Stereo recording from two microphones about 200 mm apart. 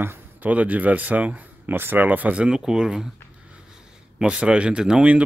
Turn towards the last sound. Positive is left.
turn(degrees=-5)  # may be behind; listen again after turning